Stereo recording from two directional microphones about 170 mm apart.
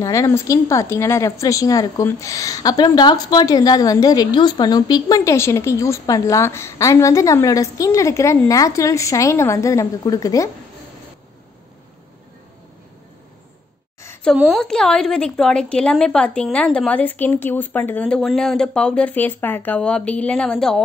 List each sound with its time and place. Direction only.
0.0 s a woman's voice: 20° left (ahead or behind)
14.2 s a woman's voice: centre (ahead or behind)